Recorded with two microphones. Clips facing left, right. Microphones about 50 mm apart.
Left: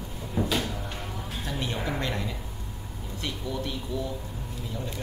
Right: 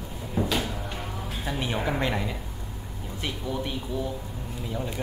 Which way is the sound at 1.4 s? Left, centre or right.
Centre.